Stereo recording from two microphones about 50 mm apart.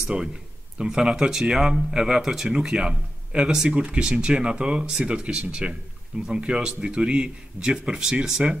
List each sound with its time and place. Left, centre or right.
0.0 s speech: centre